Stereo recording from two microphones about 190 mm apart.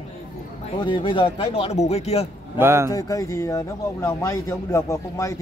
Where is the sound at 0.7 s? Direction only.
25° left (ahead or behind).